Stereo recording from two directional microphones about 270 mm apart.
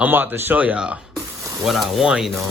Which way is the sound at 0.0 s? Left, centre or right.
Centre.